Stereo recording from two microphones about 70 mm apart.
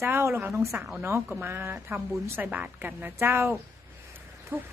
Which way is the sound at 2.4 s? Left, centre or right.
Right.